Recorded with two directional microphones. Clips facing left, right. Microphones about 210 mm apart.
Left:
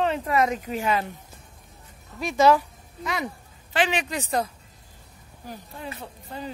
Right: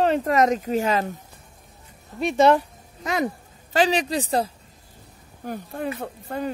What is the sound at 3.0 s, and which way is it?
Speech, 45° right (ahead or behind).